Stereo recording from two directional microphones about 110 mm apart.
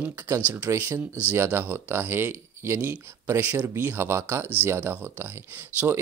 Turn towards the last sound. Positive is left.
turn(degrees=-25)  # may be behind; listen again after turning